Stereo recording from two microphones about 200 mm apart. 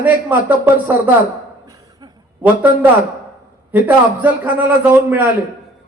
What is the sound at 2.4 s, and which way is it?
Speech, 10° right (ahead or behind).